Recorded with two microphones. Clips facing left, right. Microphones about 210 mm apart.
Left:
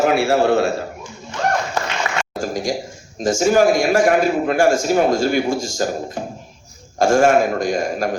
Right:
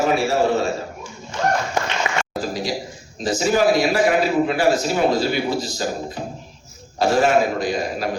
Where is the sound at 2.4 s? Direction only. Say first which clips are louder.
Left 4 dB; 45° left (ahead or behind).